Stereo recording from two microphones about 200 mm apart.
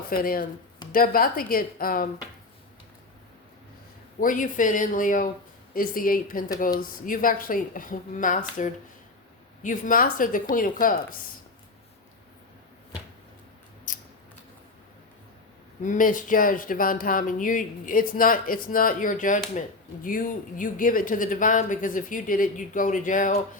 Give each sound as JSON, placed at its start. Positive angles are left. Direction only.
{"t": 0.1, "sound": "speech", "side_deg": 45}
{"t": 4.2, "sound": "speech", "side_deg": 40}
{"t": 13.9, "sound": "scissors", "side_deg": 40}
{"t": 15.8, "sound": "speech", "side_deg": 40}